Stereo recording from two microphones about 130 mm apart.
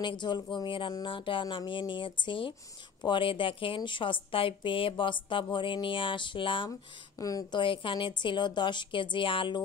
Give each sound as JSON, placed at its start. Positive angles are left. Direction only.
{"t": 0.0, "sound": "a woman's voice", "side_deg": 35}
{"t": 7.2, "sound": "a woman's voice", "side_deg": 25}
{"t": 7.6, "sound": "a woman's voice", "side_deg": 40}